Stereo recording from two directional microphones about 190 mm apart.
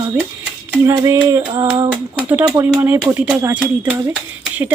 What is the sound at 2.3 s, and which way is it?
Speech, 10° right (ahead or behind).